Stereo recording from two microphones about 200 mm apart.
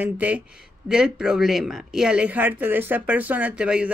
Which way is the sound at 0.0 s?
5° right (ahead or behind).